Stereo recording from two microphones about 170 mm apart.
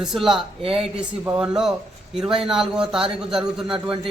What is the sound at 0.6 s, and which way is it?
Speech, 35° right (ahead or behind).